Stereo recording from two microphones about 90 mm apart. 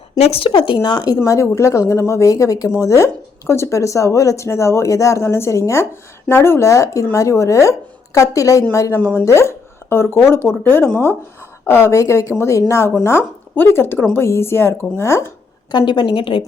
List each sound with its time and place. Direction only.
0.3 s speech: 90° left; by 0.8 s 75° left (ahead or behind)
0.8 s speech: 50° left (ahead or behind)
1.2 s speech: 35° left (ahead or behind)
9.0 s speech: 20° left (ahead or behind)
9.2 s speech: 30° left (ahead or behind)
15.9 s a woman's voice: 65° left (ahead or behind)